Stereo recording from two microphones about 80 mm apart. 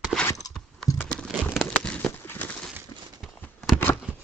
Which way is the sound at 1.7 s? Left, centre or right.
Centre.